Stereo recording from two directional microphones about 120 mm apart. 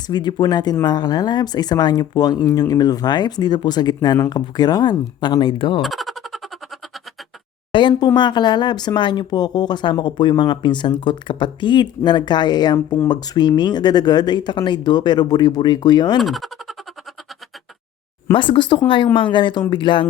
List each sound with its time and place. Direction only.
0.1 s speech: 40° left (ahead or behind)
5.8 s a sound: centre (ahead or behind)
7.7 s speech: 40° left (ahead or behind)
16.2 s speech: centre (ahead or behind)
18.3 s speech: 45° left (ahead or behind)